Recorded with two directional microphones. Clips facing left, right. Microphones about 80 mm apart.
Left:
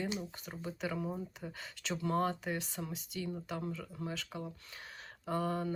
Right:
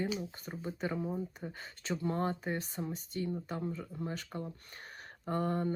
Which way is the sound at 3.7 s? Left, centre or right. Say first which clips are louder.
Right 2 dB; centre.